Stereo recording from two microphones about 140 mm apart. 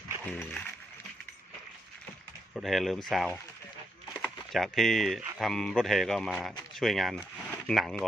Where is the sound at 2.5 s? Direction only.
Centre (ahead or behind).